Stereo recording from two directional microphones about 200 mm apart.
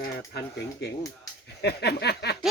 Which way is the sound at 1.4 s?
55° left (ahead or behind).